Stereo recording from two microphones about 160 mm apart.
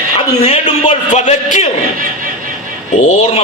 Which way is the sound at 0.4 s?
40° left (ahead or behind).